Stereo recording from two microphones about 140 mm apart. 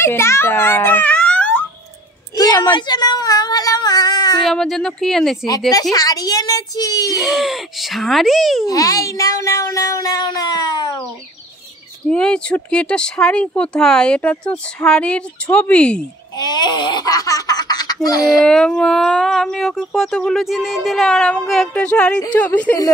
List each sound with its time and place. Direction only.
0.0 s a sound: 20° left (ahead or behind)
2.3 s a sound: 25° left (ahead or behind)
4.5 s speech: 5° left (ahead or behind)
5.7 s a woman's voice: 25° left (ahead or behind)
7.2 s speech: centre (ahead or behind)
8.6 s speech: 25° left (ahead or behind)
12.1 s speech: 5° left (ahead or behind)
16.3 s a woman's voice: 30° left (ahead or behind)
18.4 s speech: 5° left (ahead or behind)